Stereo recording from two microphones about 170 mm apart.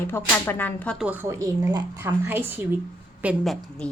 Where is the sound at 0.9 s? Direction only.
10° right (ahead or behind).